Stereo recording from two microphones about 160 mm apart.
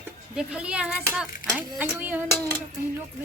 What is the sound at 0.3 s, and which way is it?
Speech, 5° right (ahead or behind).